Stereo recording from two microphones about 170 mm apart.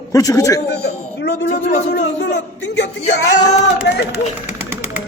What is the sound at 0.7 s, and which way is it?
Speech, 80° left.